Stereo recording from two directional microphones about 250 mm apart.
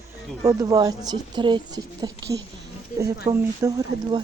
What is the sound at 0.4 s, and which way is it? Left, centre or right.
Speech, centre.